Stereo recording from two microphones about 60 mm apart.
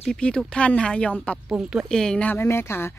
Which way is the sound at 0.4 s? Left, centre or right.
Centre.